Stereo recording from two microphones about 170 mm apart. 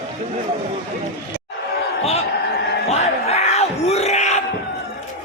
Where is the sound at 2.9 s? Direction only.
40° left (ahead or behind).